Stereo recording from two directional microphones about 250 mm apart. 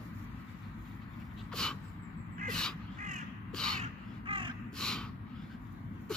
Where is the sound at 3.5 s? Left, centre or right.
Centre.